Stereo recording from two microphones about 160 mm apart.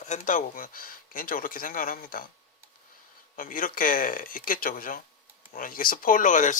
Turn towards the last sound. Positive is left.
turn(degrees=55)  # may be behind; listen again after turning